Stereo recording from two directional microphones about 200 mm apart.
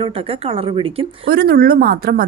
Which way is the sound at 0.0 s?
30° right (ahead or behind).